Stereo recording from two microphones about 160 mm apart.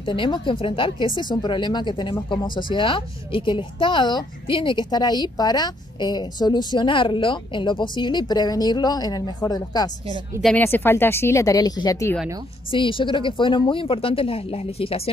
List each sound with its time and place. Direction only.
0.0 s speech: 30° left (ahead or behind)
10.4 s speech: 10° left (ahead or behind)
12.7 s speech: 30° left (ahead or behind)